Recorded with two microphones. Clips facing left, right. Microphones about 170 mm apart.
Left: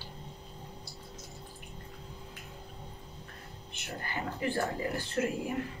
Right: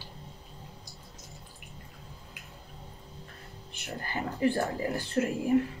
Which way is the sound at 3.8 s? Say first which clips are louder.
Right 2 dB; 35° right (ahead or behind).